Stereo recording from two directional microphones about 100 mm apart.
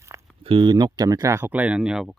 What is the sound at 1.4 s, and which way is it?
Speech, 15° right (ahead or behind).